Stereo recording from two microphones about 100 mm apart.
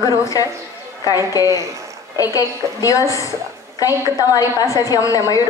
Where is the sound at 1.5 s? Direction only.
30° right (ahead or behind).